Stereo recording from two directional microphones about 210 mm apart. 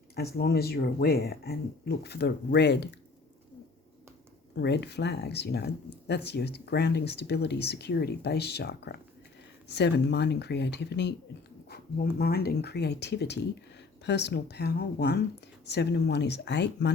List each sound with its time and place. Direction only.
0.2 s speech: 50° left (ahead or behind)
4.5 s speech: 55° left (ahead or behind)